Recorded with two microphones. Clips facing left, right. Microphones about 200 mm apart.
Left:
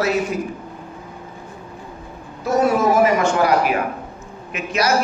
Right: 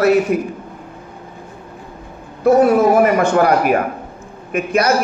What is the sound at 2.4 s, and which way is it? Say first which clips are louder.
A man's voice: right 6 dB; 55° right (ahead or behind).